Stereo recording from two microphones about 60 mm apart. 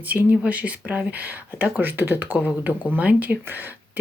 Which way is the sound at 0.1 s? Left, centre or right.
Right.